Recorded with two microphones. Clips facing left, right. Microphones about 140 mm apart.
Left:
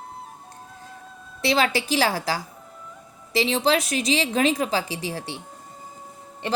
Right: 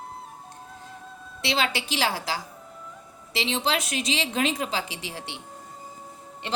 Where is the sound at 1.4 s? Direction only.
40° left (ahead or behind).